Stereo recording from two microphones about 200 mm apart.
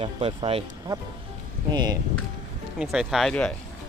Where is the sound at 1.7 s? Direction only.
20° right (ahead or behind).